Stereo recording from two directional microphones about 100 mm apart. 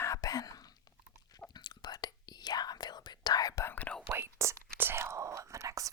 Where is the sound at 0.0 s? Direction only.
35° left (ahead or behind).